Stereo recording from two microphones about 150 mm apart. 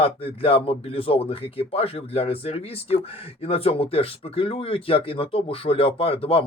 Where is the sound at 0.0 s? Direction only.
40° left (ahead or behind).